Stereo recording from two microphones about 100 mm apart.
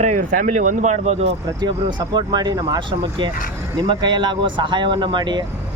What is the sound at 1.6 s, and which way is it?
Speech, 50° right (ahead or behind).